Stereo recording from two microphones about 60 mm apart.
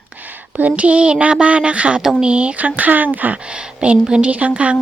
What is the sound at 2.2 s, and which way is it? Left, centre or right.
A woman's voice, centre.